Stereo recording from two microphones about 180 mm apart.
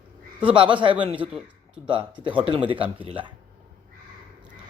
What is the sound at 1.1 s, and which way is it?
Speech, 5° right (ahead or behind).